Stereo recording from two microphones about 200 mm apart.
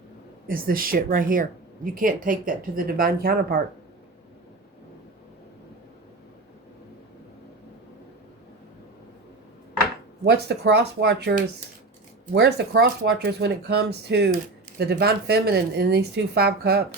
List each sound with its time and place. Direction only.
0.4 s speech: 45° right (ahead or behind)
10.2 s a woman's voice: 55° right (ahead or behind)